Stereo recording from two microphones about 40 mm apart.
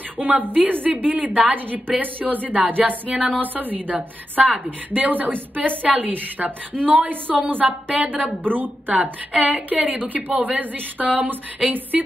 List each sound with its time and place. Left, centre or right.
0.2 s a woman's voice: right
3.1 s speech: right
3.3 s a woman's voice: right
8.9 s a woman's voice: right